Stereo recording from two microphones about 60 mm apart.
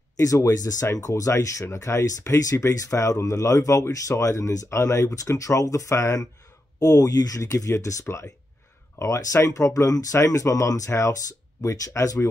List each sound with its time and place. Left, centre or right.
0.2 s speech: left
2.7 s speech: left
6.8 s speech: left